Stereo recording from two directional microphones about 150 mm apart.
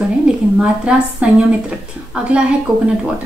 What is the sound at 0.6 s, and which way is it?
A woman's voice, 5° right (ahead or behind).